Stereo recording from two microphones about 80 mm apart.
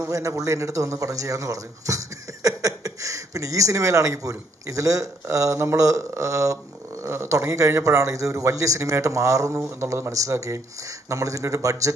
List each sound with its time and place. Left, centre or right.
0.0 s a man's voice: right